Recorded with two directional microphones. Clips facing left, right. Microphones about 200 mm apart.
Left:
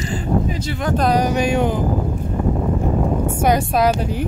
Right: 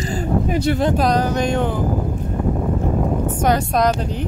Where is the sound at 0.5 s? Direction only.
60° right (ahead or behind).